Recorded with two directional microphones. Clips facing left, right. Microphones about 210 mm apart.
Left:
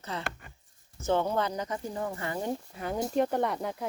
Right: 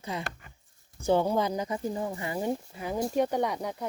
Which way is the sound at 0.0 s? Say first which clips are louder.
Right 1 dB; 10° right (ahead or behind).